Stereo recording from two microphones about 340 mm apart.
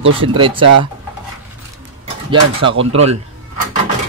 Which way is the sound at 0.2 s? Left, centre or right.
Centre.